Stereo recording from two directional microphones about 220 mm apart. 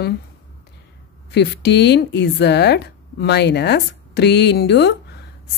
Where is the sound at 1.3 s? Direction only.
50° left (ahead or behind).